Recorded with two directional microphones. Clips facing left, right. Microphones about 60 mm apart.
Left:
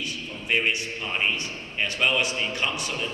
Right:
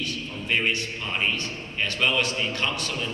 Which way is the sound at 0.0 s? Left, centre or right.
Centre.